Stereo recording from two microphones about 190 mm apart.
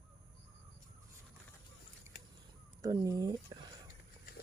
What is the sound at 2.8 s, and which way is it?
Speech, 20° right (ahead or behind).